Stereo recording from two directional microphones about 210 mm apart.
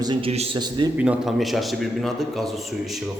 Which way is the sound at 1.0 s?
5° right (ahead or behind).